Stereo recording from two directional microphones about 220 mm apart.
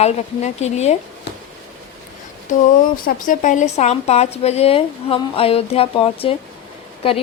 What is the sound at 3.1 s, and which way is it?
Speech, 35° left (ahead or behind).